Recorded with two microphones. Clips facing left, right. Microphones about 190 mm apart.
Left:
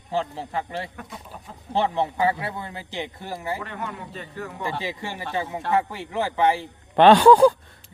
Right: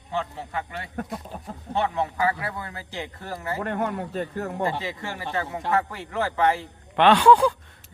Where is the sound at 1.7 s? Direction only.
30° left (ahead or behind).